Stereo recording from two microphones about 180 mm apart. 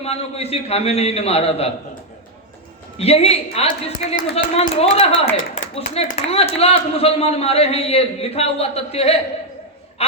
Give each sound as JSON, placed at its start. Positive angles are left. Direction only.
{"t": 0.0, "sound": "a man's voice", "side_deg": 35}
{"t": 3.0, "sound": "a man's voice", "side_deg": 35}
{"t": 10.0, "sound": "a sound", "side_deg": 35}